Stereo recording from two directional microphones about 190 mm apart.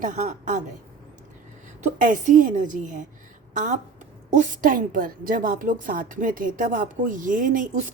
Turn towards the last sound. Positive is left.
turn(degrees=-40)  # may be behind; listen again after turning